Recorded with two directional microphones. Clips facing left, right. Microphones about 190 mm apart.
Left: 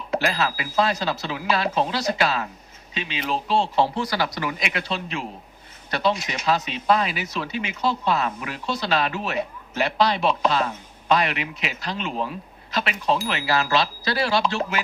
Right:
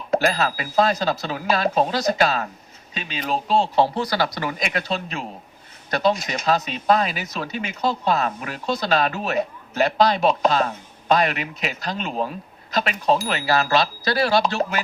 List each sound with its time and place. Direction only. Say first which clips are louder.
0.1 s speech: right 3 dB; 40° right (ahead or behind)